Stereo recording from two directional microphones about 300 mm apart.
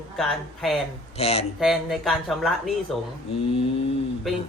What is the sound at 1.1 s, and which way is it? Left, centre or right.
Speech, centre.